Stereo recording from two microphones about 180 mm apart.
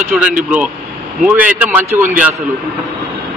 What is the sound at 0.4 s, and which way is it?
A man's voice, 5° right (ahead or behind).